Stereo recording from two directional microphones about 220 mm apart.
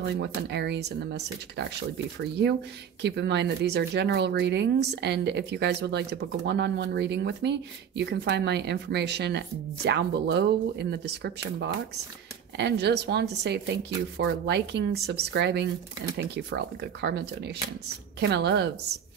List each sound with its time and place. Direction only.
0.0 s speech: 50° right (ahead or behind)
3.0 s speech: 50° right (ahead or behind)
18.2 s speech: 50° right (ahead or behind)